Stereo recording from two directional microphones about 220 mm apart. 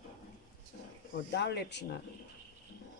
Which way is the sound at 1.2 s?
50° left (ahead or behind).